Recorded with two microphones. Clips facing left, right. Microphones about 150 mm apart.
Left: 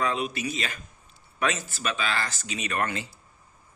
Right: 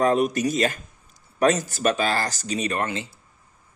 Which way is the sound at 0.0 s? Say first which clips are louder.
Right 8 dB; 45° right (ahead or behind).